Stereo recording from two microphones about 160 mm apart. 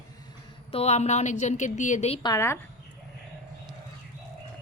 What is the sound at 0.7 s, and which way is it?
A woman's voice, 40° left (ahead or behind).